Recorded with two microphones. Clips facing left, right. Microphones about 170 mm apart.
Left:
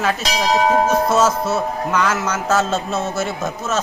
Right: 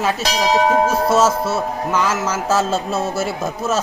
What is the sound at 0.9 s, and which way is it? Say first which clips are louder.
Music: even; 30° right (ahead or behind).